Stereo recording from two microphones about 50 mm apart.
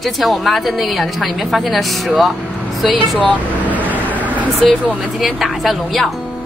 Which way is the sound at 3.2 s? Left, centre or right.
Left.